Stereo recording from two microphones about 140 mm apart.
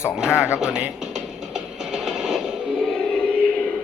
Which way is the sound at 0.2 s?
5° right (ahead or behind).